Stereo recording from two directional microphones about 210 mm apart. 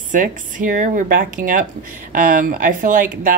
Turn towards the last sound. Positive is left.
turn(degrees=-40)  # may be behind; listen again after turning